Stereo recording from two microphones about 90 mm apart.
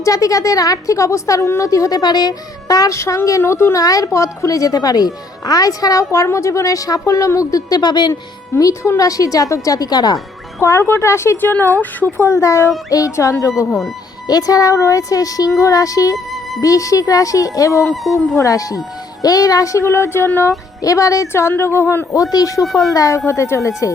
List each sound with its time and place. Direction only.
0.0 s a woman's voice: 40° left (ahead or behind)
8.1 s a woman's voice: 40° left (ahead or behind)
10.6 s a woman's voice: 30° left (ahead or behind)
13.7 s speech: centre (ahead or behind)
14.3 s a woman's voice: 45° left (ahead or behind)
16.1 s music: centre (ahead or behind)
16.6 s a woman's voice: 40° left (ahead or behind)
20.8 s a woman's voice: 40° left (ahead or behind)
22.6 s speech: centre (ahead or behind)
23.0 s a woman's voice: 35° left (ahead or behind)